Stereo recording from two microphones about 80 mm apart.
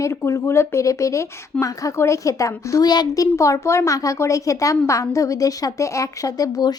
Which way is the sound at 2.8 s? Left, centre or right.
Left.